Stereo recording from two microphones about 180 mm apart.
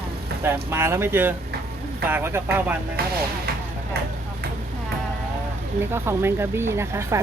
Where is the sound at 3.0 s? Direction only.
60° right (ahead or behind).